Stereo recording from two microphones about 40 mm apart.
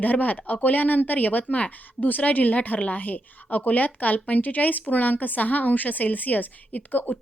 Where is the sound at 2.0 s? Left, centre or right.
Left.